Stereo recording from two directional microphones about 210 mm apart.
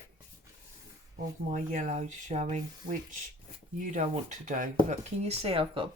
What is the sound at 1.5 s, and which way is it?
Speech, 35° right (ahead or behind).